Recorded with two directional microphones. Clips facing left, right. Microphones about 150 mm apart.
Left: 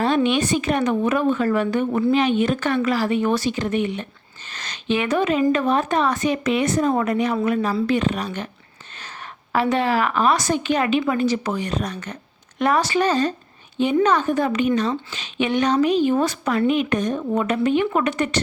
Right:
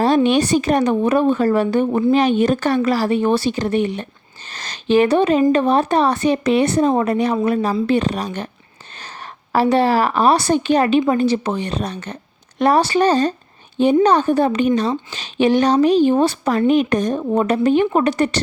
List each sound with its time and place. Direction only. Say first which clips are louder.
0.0 s a woman's voice: right 4 dB; 35° right (ahead or behind)
9.5 s a woman's voice: right 5 dB; 35° right (ahead or behind)